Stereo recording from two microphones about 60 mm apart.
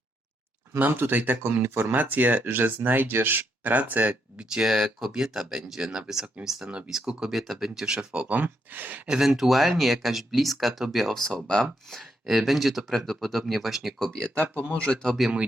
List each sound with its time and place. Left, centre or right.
0.8 s speech: right
4.6 s speech: centre
8.1 s speech: right
9.0 s speech: centre
14.8 s speech: centre